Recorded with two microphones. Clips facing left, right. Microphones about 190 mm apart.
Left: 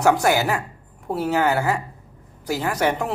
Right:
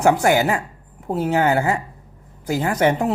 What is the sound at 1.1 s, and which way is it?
Speech, 20° right (ahead or behind).